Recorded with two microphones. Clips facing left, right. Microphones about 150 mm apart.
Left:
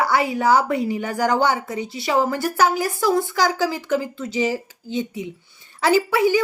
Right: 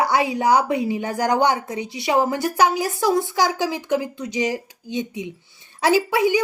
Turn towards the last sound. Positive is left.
turn(degrees=-20)  # may be behind; listen again after turning